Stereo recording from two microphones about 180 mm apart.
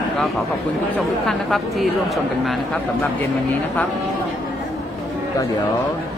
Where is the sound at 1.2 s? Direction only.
Centre (ahead or behind).